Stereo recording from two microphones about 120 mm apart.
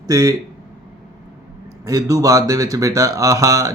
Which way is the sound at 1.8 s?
30° right (ahead or behind).